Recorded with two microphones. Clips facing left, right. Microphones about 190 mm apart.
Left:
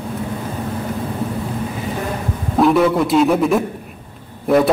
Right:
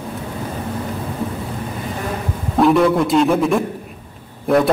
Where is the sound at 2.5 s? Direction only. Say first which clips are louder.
Even; centre (ahead or behind).